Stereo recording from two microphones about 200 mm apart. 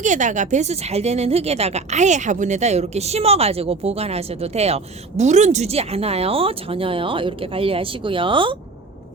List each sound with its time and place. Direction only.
0.0 s a woman's voice: 40° right (ahead or behind)